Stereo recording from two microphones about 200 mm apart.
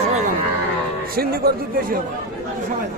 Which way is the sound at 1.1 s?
50° right (ahead or behind).